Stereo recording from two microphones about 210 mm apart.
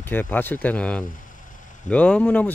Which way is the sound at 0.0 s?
10° left (ahead or behind).